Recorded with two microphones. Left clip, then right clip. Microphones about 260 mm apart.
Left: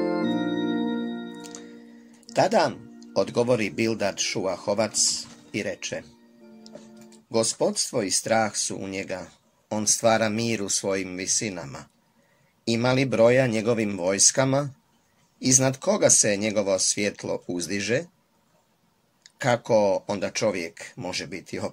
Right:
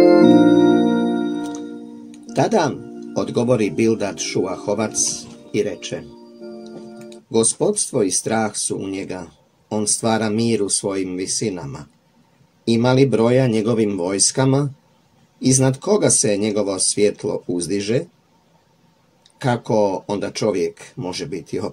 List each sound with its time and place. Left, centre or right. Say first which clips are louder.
0.0 s music: right 15 dB; right
2.3 s speech: right 3 dB; left
7.2 s speech: right 6 dB; left
19.4 s speech: right 2 dB; left